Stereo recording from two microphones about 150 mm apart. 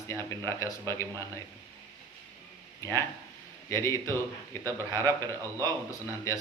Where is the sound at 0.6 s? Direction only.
20° left (ahead or behind).